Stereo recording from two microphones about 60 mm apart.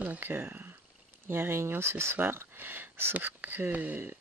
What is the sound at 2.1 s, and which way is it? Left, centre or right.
Speech, right.